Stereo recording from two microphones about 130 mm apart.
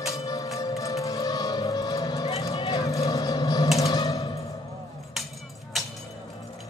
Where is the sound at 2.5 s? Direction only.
30° left (ahead or behind).